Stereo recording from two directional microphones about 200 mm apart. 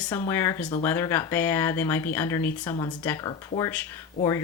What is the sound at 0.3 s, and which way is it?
Speech, 15° left (ahead or behind).